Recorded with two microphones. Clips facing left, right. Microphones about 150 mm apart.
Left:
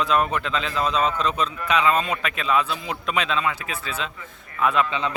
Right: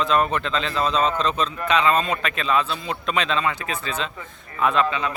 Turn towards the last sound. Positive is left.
turn(degrees=25)  # may be behind; listen again after turning